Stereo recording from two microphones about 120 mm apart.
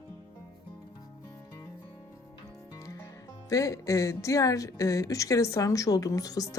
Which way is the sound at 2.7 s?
25° left (ahead or behind).